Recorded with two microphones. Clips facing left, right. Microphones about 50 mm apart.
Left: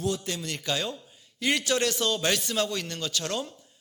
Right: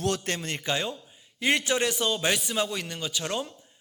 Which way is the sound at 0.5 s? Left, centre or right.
Right.